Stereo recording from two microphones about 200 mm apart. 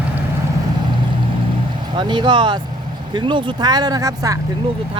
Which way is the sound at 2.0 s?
25° right (ahead or behind).